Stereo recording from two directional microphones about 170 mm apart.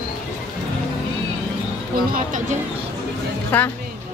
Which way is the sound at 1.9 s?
50° right (ahead or behind).